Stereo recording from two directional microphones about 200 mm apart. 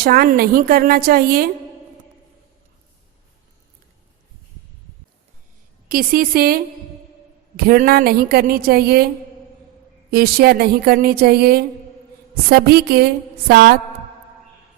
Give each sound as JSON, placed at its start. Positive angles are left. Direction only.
{"t": 0.0, "sound": "a woman's voice", "side_deg": -50}
{"t": 5.9, "sound": "a woman's voice", "side_deg": -45}
{"t": 10.1, "sound": "a woman's voice", "side_deg": -50}